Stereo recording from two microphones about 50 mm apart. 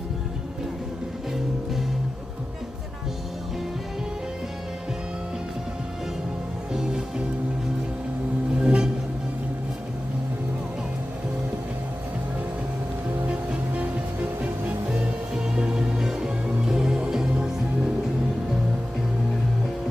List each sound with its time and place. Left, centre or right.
6.7 s music: centre
8.6 s music: centre
13.3 s music: right
15.4 s music: centre